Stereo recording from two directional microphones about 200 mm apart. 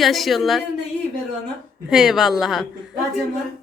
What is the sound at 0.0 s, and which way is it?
Speech, centre (ahead or behind).